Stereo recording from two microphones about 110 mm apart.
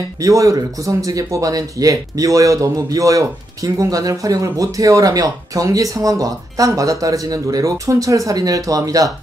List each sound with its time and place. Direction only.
0.2 s speech: 30° right (ahead or behind)